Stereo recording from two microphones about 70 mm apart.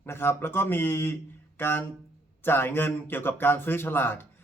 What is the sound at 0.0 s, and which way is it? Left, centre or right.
Speech, left.